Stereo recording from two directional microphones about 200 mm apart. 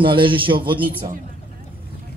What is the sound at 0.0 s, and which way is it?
Speech, 25° right (ahead or behind).